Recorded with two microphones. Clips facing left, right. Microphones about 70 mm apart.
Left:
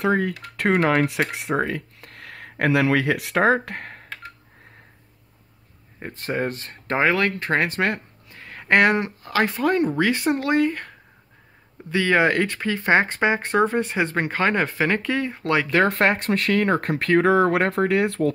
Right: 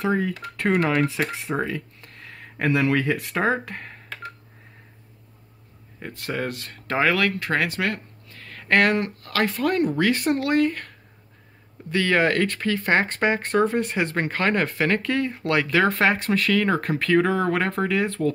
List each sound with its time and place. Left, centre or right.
0.0 s speech: left
1.5 s speech: left
5.9 s speech: left
8.3 s speech: left
11.9 s speech: centre
15.7 s speech: left